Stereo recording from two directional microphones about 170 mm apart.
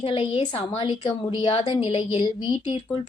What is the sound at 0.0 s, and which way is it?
A woman's voice, 35° left (ahead or behind).